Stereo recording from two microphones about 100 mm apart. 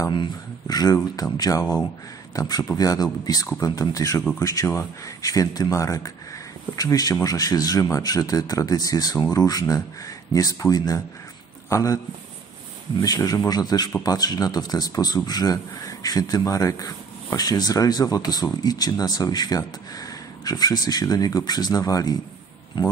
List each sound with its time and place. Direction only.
0.1 s a man's voice: 45° left (ahead or behind)
13.0 s speech: 40° left (ahead or behind)